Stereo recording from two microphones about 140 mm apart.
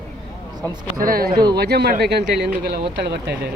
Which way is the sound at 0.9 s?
90° right.